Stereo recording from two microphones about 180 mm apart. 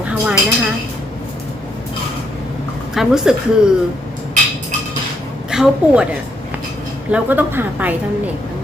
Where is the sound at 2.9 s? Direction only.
Centre (ahead or behind).